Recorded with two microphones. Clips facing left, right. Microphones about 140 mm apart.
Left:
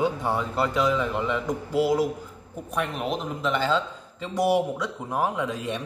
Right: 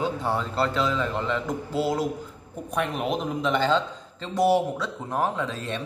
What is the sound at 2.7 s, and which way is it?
Speech, centre (ahead or behind).